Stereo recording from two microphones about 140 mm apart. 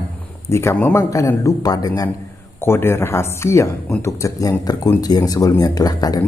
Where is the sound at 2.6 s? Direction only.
15° left (ahead or behind).